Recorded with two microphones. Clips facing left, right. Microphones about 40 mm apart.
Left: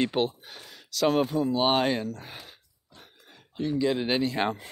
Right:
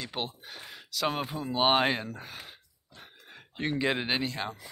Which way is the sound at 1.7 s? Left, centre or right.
Centre.